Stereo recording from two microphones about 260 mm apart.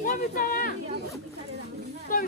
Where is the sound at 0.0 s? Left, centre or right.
Left.